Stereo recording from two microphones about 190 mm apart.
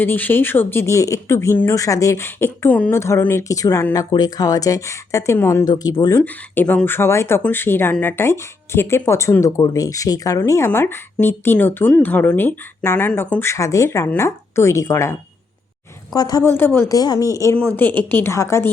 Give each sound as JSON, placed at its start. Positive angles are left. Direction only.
{"t": 0.0, "sound": "speech", "side_deg": 10}
{"t": 16.1, "sound": "speech", "side_deg": 20}